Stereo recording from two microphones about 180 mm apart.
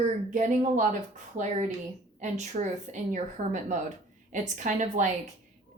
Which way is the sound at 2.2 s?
40° right (ahead or behind).